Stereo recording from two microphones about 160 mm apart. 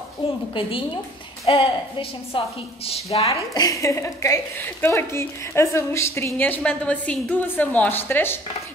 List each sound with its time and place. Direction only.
0.2 s a woman's voice: 35° left (ahead or behind)
3.5 s a woman's voice: 20° left (ahead or behind)